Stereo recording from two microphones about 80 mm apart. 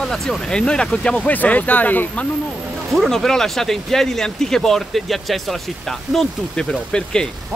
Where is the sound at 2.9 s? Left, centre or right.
Centre.